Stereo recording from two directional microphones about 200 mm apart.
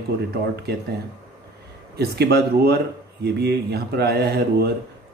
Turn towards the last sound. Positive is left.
turn(degrees=-55)  # may be behind; listen again after turning